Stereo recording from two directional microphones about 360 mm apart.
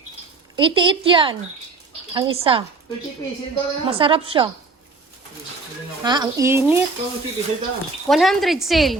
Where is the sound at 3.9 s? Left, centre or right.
Centre.